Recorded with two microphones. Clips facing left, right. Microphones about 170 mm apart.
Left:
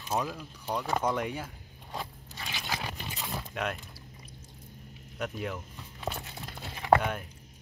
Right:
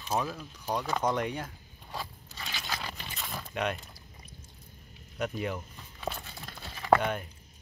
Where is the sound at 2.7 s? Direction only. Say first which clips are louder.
Left 3 dB; 15° left (ahead or behind).